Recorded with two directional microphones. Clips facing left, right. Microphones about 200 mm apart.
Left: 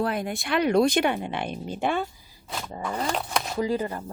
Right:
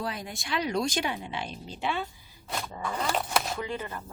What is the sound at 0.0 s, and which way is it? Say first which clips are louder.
Speech: left 8 dB; 60° left (ahead or behind).